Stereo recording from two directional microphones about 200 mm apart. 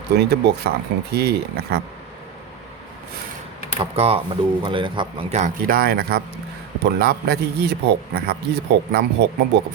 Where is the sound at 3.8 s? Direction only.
30° right (ahead or behind).